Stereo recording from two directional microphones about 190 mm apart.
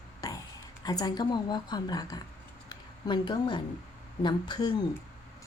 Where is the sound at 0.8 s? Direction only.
20° left (ahead or behind).